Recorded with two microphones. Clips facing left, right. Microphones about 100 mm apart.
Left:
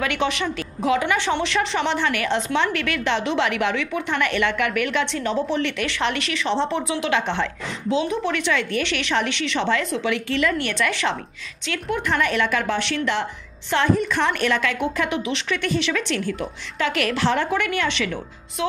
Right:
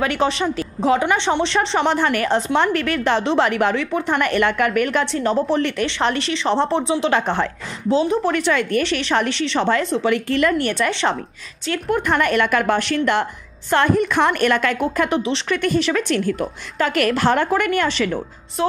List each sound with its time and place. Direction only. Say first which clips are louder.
0.0 s a woman's voice: right 4 dB; 35° right (ahead or behind)
1.9 s a woman's voice: right 4 dB; 45° right (ahead or behind)
11.7 s a woman's voice: right 4 dB; 50° right (ahead or behind); by 15.4 s 35° right (ahead or behind)
15.5 s a woman's voice: right 5 dB; 45° right (ahead or behind)